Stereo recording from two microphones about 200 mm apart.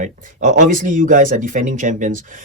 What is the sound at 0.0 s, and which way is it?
Speech, 40° right (ahead or behind).